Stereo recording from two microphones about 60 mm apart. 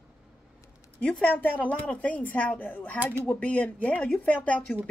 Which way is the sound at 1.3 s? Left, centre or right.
Left.